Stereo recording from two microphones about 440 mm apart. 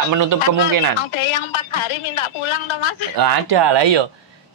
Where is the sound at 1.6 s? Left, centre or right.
Left.